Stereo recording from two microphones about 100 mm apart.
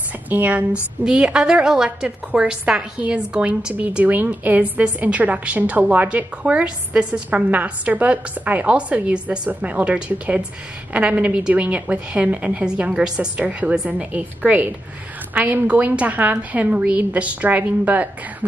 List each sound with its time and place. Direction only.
0.3 s a woman's voice: 15° right (ahead or behind)